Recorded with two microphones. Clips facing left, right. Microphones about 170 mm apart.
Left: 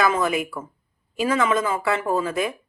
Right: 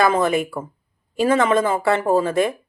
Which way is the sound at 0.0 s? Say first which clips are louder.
Right 4 dB; 30° right (ahead or behind).